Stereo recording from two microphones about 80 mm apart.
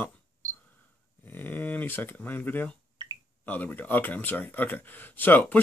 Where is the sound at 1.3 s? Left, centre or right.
Left.